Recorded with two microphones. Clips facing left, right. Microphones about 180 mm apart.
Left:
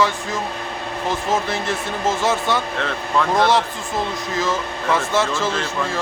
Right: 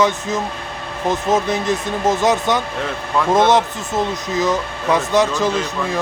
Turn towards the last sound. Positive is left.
turn(degrees=-15)  # may be behind; listen again after turning